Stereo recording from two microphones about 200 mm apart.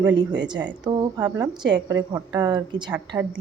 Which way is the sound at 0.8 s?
20° right (ahead or behind).